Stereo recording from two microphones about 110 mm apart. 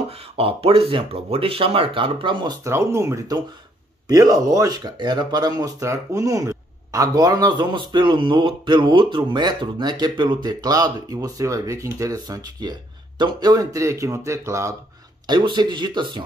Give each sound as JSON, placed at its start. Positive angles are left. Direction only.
{"t": 0.1, "sound": "speech", "side_deg": -60}
{"t": 2.6, "sound": "speech", "side_deg": -25}
{"t": 15.2, "sound": "speech", "side_deg": -45}